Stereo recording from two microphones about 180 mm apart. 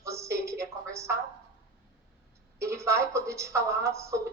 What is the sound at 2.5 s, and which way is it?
A woman's voice, 15° right (ahead or behind).